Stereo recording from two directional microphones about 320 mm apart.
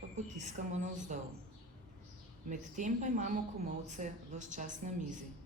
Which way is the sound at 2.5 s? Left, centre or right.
Right.